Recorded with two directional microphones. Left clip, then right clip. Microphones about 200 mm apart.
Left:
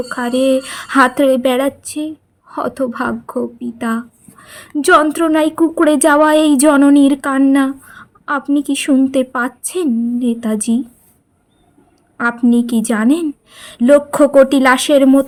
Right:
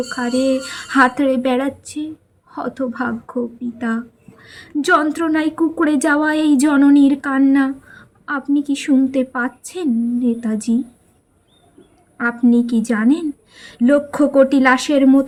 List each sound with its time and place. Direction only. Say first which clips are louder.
0.1 s a woman's voice: left 5 dB; 30° left (ahead or behind)
12.1 s a woman's voice: left 2 dB; 30° left (ahead or behind)